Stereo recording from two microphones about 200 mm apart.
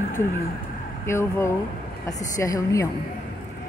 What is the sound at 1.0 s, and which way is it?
Speech, 15° left (ahead or behind).